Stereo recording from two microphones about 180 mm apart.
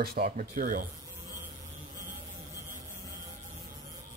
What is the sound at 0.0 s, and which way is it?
Speech, 60° right (ahead or behind).